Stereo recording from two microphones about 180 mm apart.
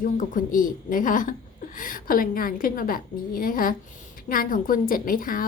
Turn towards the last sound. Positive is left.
turn(degrees=50)  # may be behind; listen again after turning